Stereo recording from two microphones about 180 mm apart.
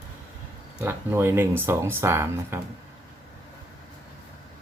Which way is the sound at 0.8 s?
15° right (ahead or behind).